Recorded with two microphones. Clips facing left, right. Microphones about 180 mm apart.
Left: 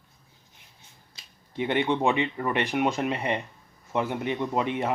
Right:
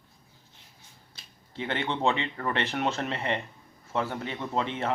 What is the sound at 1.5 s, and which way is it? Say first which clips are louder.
A man's voice: left 6 dB; 15° left (ahead or behind).